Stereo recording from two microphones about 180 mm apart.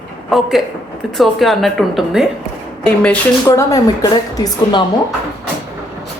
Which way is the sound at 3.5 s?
20° left (ahead or behind).